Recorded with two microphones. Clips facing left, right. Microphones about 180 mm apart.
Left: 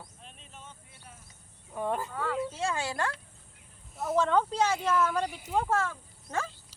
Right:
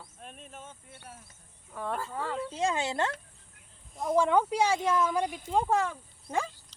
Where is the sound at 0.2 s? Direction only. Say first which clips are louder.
Right 5 dB; 50° right (ahead or behind).